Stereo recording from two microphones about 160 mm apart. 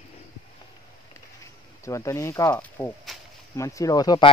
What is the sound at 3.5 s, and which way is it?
Speech, 20° left (ahead or behind).